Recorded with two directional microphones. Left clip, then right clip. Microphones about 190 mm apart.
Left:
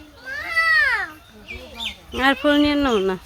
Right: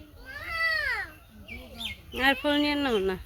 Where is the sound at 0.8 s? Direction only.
45° left (ahead or behind).